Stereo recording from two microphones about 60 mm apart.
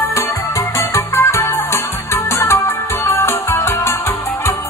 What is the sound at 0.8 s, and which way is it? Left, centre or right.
Music, left.